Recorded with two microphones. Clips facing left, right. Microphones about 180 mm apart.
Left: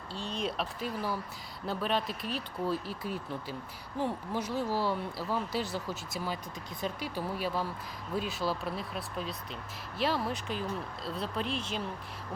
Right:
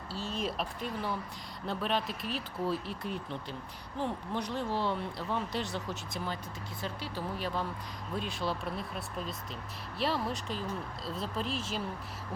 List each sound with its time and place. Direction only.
0.1 s speech: 5° right (ahead or behind)